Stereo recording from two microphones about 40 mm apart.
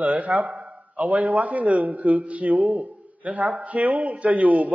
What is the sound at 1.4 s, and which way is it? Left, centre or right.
A man's voice, right.